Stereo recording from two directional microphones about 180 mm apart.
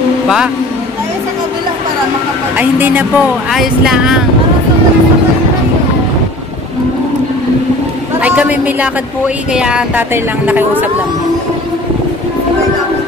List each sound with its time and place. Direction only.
2.5 s speech: 10° right (ahead or behind)
8.2 s a man's voice: 10° right (ahead or behind)